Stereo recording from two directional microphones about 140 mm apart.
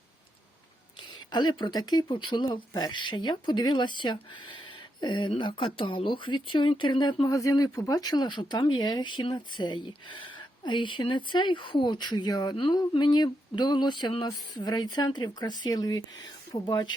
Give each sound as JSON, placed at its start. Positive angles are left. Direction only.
{"t": 1.3, "sound": "speech", "side_deg": 35}